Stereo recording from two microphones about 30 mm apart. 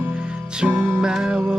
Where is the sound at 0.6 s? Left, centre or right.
Right.